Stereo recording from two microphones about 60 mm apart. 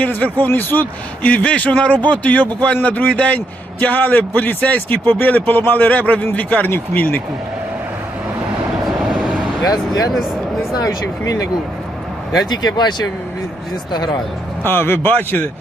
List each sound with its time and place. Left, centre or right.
0.0 s a man's voice: left
10.1 s a sound: centre
10.8 s speech: left
14.6 s speech: left
15.1 s a man's voice: left